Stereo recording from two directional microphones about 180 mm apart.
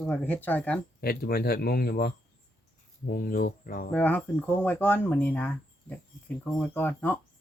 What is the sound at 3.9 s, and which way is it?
Speech, 10° left (ahead or behind).